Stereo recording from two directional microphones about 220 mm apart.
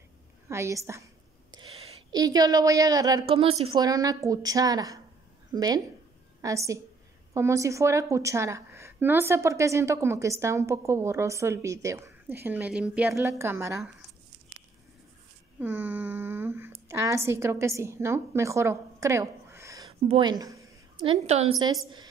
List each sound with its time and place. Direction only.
0.5 s a woman's voice: 15° right (ahead or behind)
1.5 s a woman's voice: 25° right (ahead or behind)
15.6 s a sound: 10° right (ahead or behind)
16.9 s a woman's voice: 10° right (ahead or behind)
20.1 s a sound: 20° right (ahead or behind)
21.1 s a woman's voice: 30° right (ahead or behind)